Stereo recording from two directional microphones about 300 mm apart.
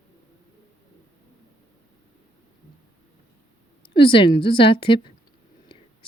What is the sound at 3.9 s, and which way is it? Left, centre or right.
Speech, centre.